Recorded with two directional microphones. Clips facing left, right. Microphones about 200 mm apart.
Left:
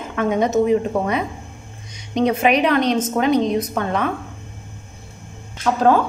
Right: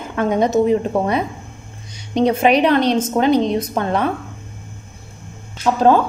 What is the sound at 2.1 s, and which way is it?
A woman's voice, 35° right (ahead or behind).